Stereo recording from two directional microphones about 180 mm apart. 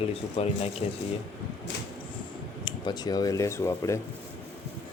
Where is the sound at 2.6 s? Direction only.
25° left (ahead or behind).